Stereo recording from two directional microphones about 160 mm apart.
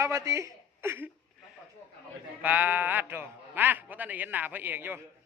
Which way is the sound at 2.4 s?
10° right (ahead or behind).